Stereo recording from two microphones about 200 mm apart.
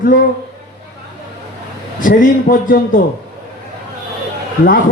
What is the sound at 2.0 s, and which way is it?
Speech, 40° left (ahead or behind).